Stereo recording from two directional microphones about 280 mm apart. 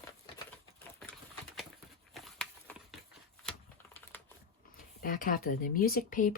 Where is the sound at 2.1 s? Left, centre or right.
Centre.